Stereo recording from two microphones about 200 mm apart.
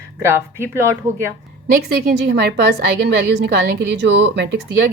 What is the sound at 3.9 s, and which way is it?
Speech, 65° right (ahead or behind).